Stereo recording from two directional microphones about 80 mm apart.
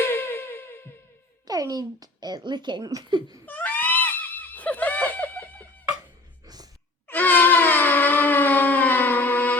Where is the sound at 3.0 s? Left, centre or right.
Right.